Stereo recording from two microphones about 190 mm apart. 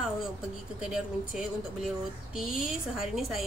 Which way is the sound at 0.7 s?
5° right (ahead or behind).